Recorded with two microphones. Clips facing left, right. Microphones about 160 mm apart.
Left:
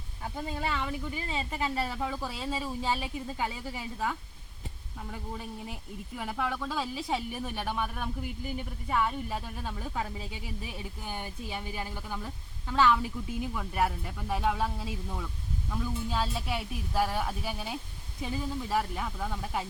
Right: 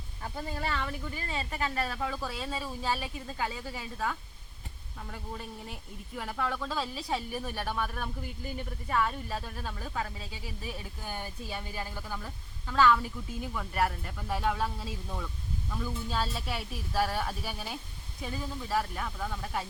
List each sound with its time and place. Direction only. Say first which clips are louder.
0.4 s speech: left 1 dB; 15° left (ahead or behind)
6.1 s speech: even; 15° left (ahead or behind)
15.7 s speech: left 2 dB; 15° left (ahead or behind)